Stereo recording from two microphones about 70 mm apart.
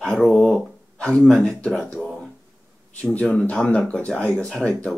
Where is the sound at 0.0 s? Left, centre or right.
Centre.